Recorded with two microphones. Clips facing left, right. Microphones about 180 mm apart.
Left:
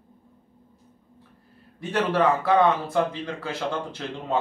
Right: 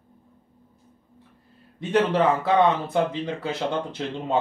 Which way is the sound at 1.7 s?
20° right (ahead or behind).